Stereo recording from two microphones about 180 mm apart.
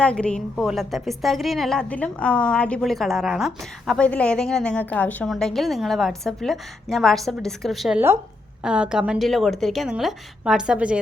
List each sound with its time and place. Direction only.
0.0 s a woman's voice: 5° left (ahead or behind)